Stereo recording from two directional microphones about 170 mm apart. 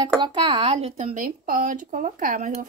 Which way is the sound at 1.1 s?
50° right (ahead or behind).